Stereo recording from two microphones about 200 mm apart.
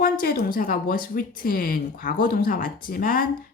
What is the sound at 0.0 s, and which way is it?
Speech, 50° left (ahead or behind).